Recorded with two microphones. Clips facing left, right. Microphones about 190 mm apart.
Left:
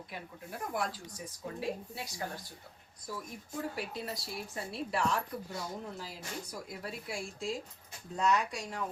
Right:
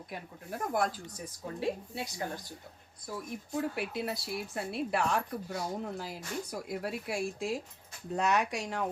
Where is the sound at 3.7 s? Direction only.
60° right (ahead or behind).